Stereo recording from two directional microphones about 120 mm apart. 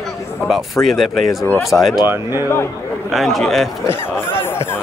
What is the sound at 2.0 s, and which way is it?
Speech, 20° right (ahead or behind).